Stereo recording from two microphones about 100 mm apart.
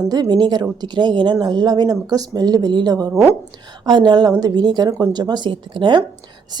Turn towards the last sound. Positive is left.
turn(degrees=-55)  # may be behind; listen again after turning